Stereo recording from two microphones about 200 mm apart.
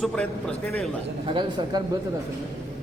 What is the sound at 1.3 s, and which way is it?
Speech, 25° right (ahead or behind).